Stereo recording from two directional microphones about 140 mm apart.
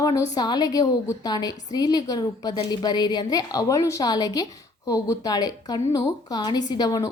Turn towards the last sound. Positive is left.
turn(degrees=25)  # may be behind; listen again after turning